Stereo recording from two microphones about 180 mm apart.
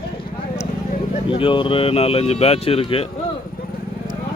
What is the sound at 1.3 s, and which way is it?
Speech, 30° left (ahead or behind).